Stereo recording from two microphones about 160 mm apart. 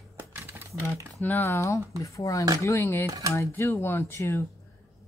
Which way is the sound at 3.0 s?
20° right (ahead or behind).